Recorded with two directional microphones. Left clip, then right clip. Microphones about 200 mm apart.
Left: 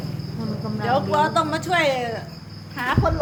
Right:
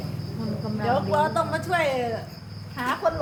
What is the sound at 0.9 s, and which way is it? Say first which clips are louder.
Speech: left 3 dB; 35° left (ahead or behind).